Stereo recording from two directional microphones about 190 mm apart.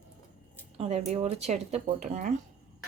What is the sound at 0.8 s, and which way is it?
A woman's voice, 35° right (ahead or behind).